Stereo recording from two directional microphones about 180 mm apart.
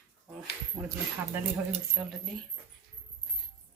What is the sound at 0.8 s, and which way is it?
Speech, 15° right (ahead or behind).